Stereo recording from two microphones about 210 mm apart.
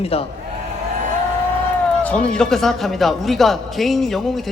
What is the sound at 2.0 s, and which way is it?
A man's voice, 5° left (ahead or behind).